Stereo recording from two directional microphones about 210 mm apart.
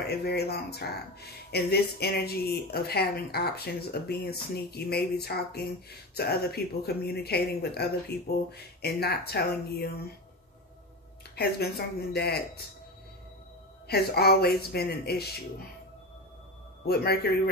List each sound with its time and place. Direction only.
0.0 s speech: 50° left (ahead or behind)
11.3 s speech: 50° left (ahead or behind)
13.8 s speech: 50° left (ahead or behind)
16.8 s speech: 50° left (ahead or behind)